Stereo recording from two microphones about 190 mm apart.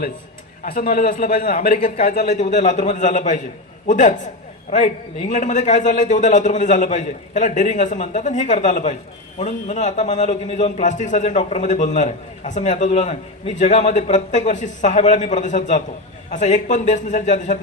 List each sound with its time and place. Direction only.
0.6 s a man's voice: 50° left (ahead or behind)
5.3 s a man's voice: 40° left (ahead or behind)